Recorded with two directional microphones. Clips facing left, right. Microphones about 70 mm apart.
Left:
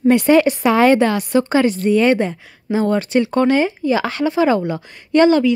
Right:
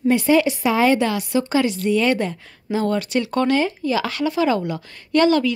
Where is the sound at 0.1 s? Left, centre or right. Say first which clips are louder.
Left 4 dB; left.